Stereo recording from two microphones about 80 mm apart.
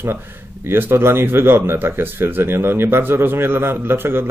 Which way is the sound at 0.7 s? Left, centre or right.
Right.